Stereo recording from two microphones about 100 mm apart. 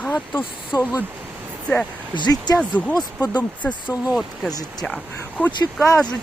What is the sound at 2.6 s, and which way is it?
Speech, 10° left (ahead or behind).